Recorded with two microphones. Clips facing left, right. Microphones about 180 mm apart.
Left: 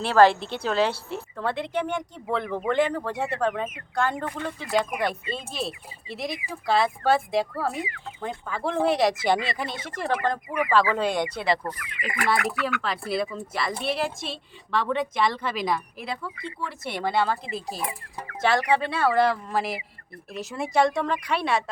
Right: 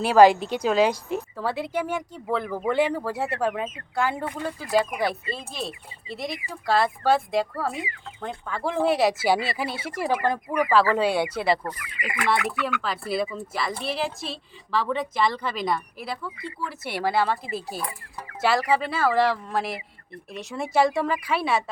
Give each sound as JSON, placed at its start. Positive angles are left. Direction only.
{"t": 0.0, "sound": "a woman's voice", "side_deg": -10}
{"t": 12.8, "sound": "a woman's voice", "side_deg": 0}
{"t": 17.7, "sound": "speech", "side_deg": 25}
{"t": 18.3, "sound": "a woman's voice", "side_deg": -5}